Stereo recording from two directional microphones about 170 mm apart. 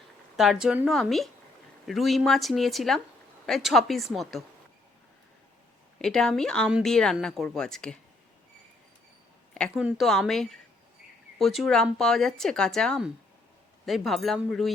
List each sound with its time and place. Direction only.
0.3 s speech: 5° right (ahead or behind)
6.0 s speech: centre (ahead or behind)
9.7 s speech: 5° right (ahead or behind)